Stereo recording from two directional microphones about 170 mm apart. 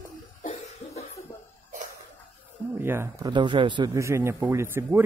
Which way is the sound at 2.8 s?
15° right (ahead or behind).